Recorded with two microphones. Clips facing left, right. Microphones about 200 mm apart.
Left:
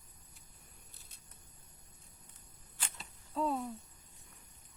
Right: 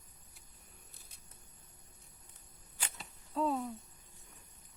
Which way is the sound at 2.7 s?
10° right (ahead or behind).